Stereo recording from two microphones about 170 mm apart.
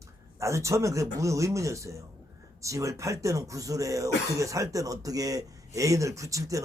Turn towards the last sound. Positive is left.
turn(degrees=-20)  # may be behind; listen again after turning